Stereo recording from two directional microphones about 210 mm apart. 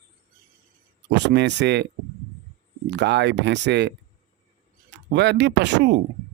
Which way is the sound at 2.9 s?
55° right (ahead or behind).